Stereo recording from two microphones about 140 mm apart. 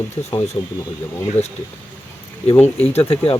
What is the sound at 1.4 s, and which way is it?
Speech, 15° left (ahead or behind).